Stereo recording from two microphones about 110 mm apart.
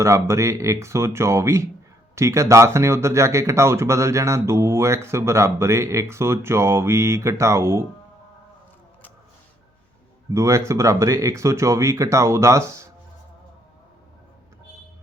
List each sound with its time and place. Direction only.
0.0 s speech: 30° right (ahead or behind)
10.3 s speech: 25° right (ahead or behind)